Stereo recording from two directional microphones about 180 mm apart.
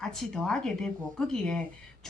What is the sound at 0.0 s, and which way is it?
A woman's voice, centre (ahead or behind).